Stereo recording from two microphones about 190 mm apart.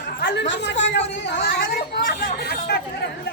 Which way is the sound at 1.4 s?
50° left (ahead or behind).